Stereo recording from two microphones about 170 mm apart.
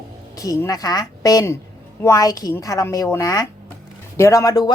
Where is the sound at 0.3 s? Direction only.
20° left (ahead or behind).